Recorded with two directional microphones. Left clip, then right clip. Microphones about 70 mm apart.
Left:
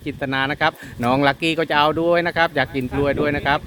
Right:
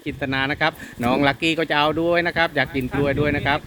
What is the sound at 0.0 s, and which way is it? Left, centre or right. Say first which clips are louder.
Speech: left 1 dB; left.